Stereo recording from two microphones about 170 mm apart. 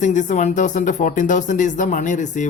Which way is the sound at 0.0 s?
45° left (ahead or behind).